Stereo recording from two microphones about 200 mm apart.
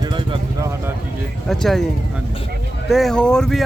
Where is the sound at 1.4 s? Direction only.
Centre (ahead or behind).